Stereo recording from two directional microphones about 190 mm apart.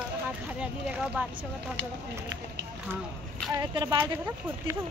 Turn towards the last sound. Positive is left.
turn(degrees=-20)  # may be behind; listen again after turning